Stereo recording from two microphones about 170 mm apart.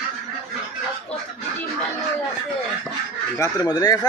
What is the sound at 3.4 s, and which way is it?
Speech, 20° left (ahead or behind).